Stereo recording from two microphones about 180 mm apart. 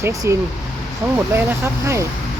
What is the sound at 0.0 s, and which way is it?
Speech, 15° right (ahead or behind).